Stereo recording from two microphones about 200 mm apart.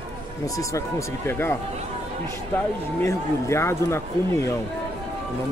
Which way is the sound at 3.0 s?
15° left (ahead or behind).